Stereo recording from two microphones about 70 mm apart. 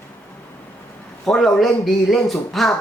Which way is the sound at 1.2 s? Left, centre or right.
Centre.